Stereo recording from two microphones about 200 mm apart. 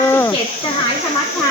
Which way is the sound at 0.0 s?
15° left (ahead or behind).